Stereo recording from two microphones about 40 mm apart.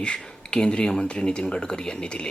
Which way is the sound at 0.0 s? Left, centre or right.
Left.